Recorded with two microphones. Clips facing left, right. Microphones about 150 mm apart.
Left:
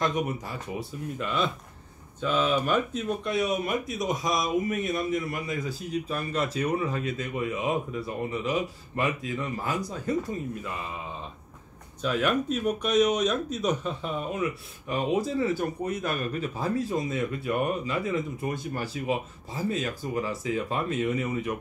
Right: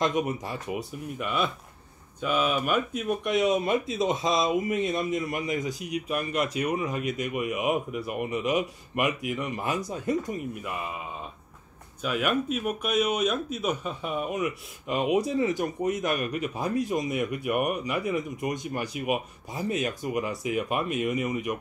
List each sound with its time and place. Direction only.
0.0 s speech: 20° right (ahead or behind)
1.1 s a man's voice: 10° right (ahead or behind)
12.0 s a man's voice: 10° right (ahead or behind)